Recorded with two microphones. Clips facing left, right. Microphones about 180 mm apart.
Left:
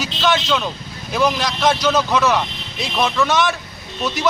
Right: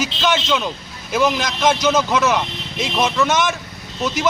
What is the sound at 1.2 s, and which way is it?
A man's voice, 20° right (ahead or behind).